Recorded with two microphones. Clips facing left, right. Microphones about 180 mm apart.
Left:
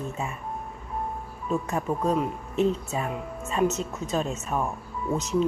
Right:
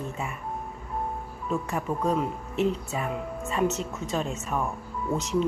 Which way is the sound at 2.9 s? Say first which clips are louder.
Even; 25° left (ahead or behind).